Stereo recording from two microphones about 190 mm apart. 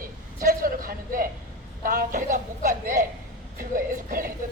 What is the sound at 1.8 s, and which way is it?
A man's voice, 50° right (ahead or behind).